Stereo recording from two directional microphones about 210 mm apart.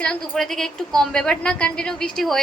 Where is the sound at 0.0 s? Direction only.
5° left (ahead or behind).